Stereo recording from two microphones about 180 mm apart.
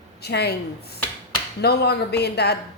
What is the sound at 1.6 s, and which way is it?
Speech, 65° left (ahead or behind).